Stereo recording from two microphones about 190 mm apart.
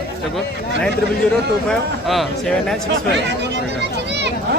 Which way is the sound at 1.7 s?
Centre (ahead or behind).